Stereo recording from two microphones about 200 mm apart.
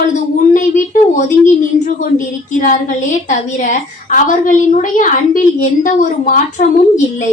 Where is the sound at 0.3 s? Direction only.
40° left (ahead or behind).